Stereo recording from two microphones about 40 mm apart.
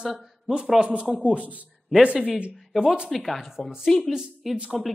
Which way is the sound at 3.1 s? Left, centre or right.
Centre.